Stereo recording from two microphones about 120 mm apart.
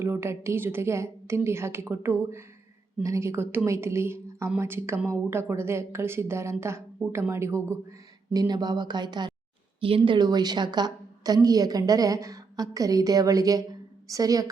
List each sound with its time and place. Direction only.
0.0 s a woman's voice: 20° right (ahead or behind)